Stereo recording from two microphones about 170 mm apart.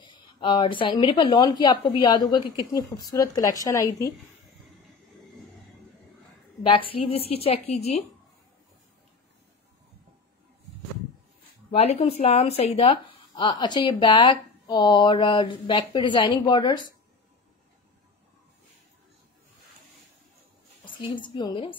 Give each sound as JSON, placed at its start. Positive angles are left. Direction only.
{"t": 0.0, "sound": "speech", "side_deg": 30}
{"t": 6.6, "sound": "a woman's voice", "side_deg": 30}
{"t": 11.7, "sound": "speech", "side_deg": 35}
{"t": 20.8, "sound": "a woman's voice", "side_deg": 30}